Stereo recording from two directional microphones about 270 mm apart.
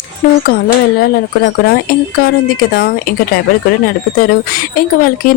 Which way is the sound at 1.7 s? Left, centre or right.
Left.